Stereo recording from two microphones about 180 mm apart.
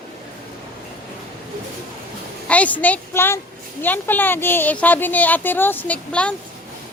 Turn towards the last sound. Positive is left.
turn(degrees=5)  # may be behind; listen again after turning